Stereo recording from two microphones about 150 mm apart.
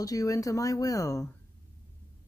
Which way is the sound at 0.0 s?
25° left (ahead or behind).